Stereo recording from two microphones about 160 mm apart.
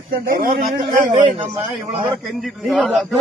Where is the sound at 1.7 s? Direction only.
Centre (ahead or behind).